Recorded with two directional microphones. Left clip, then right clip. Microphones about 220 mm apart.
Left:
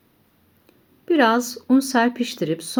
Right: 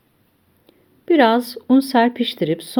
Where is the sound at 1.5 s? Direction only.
25° right (ahead or behind).